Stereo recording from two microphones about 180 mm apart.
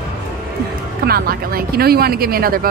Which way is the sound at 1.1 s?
55° right (ahead or behind).